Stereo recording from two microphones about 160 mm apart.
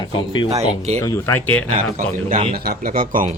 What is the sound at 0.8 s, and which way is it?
Speech, 45° right (ahead or behind).